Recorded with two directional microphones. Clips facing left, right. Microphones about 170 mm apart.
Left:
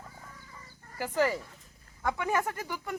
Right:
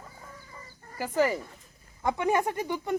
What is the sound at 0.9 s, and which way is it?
Speech, 15° right (ahead or behind).